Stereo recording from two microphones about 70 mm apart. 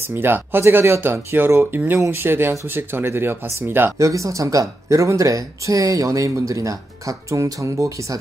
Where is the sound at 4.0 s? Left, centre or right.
Right.